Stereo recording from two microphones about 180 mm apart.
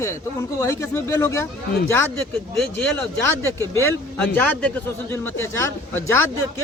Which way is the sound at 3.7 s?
10° left (ahead or behind).